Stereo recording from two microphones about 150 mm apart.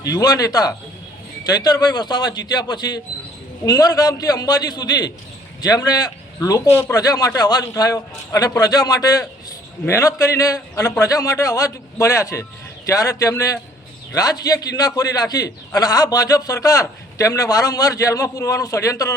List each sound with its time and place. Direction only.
0.1 s speech: 25° left (ahead or behind)